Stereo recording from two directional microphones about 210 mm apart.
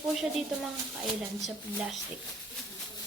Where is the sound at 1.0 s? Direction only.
5° right (ahead or behind).